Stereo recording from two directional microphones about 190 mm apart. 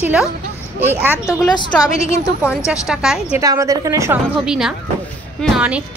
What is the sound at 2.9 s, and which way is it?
Speech, centre (ahead or behind).